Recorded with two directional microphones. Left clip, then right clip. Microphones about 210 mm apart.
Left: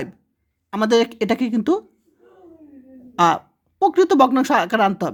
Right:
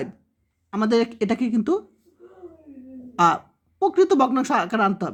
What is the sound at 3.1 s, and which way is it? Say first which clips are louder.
Speech: left 2 dB; 25° left (ahead or behind).